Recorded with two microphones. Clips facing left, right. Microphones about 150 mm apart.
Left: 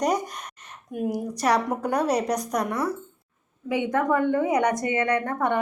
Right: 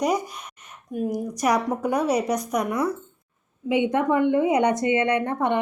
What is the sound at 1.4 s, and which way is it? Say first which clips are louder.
A woman's voice: right 1 dB; 10° right (ahead or behind).